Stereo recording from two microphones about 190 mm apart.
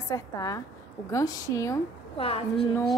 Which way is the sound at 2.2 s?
30° left (ahead or behind).